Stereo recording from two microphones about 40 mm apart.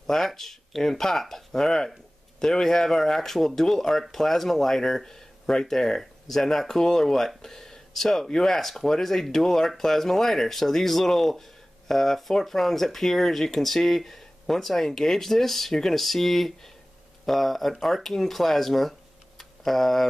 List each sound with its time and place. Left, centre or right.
0.0 s speech: centre